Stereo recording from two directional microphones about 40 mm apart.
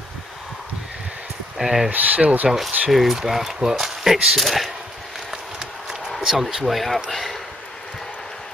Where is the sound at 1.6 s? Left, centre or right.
Centre.